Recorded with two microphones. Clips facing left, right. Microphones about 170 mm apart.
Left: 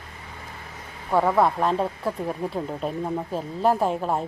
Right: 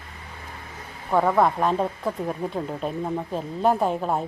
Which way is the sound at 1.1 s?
Centre (ahead or behind).